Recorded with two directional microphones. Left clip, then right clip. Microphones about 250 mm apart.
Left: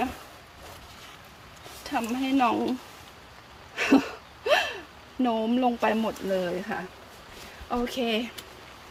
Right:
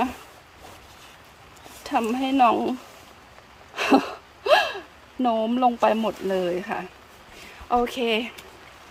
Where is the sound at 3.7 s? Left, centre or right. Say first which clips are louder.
Right 3 dB; centre.